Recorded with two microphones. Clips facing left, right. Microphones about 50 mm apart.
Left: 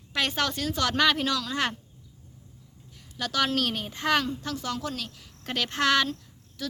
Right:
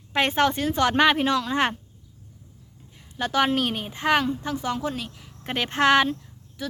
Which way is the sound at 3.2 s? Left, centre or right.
Right.